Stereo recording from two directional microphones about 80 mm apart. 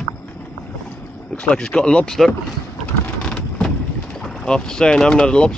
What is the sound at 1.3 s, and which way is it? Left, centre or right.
Speech, centre.